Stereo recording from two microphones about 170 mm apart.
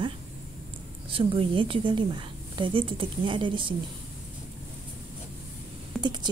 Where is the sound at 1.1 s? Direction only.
30° right (ahead or behind).